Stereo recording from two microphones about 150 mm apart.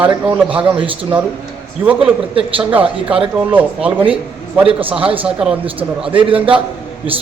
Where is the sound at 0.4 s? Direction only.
35° right (ahead or behind).